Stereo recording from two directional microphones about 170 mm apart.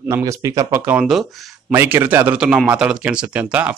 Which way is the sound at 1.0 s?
Centre (ahead or behind).